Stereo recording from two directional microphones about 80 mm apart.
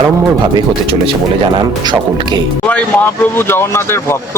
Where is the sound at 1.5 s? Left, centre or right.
Right.